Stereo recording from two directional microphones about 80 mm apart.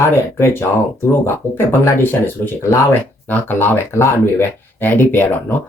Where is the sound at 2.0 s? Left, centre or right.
Left.